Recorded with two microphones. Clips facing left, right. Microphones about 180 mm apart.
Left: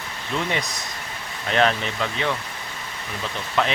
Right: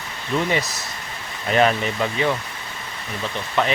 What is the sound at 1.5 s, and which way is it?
Speech, 5° right (ahead or behind).